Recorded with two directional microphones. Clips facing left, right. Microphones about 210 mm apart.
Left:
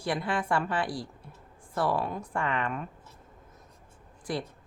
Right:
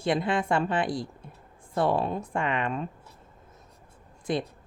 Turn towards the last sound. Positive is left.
turn(degrees=-20)  # may be behind; listen again after turning